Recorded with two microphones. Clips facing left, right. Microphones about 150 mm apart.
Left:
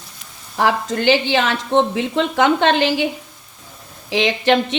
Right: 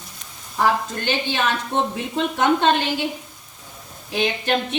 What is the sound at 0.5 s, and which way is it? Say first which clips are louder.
A woman's voice: left 2 dB; 90° left.